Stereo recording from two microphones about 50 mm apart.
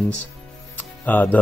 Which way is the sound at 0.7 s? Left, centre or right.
Left.